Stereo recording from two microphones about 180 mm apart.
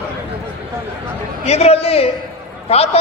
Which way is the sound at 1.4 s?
35° left (ahead or behind).